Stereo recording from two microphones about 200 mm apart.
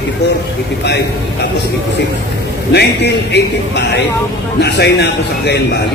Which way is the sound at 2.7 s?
55° left (ahead or behind).